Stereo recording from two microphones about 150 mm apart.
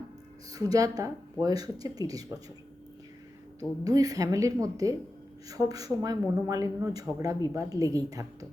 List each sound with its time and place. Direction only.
0.5 s speech: 25° right (ahead or behind)
3.8 s speech: 25° right (ahead or behind)